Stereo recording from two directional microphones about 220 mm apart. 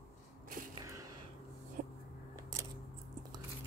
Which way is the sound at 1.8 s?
35° right (ahead or behind).